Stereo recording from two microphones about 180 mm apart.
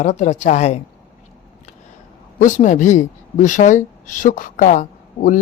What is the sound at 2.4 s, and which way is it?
A woman's voice, 45° left (ahead or behind).